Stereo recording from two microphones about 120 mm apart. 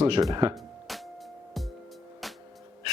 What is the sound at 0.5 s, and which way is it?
Music, centre (ahead or behind).